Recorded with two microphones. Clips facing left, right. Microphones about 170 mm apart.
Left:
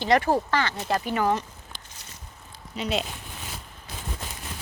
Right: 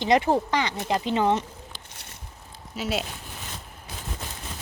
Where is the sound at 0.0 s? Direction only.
20° right (ahead or behind).